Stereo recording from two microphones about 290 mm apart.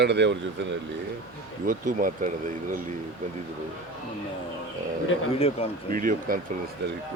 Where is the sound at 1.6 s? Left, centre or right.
Right.